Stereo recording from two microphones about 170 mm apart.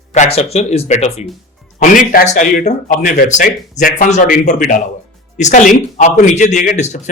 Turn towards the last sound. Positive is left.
turn(degrees=45)  # may be behind; listen again after turning